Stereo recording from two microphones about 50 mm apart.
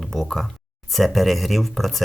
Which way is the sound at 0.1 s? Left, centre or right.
Centre.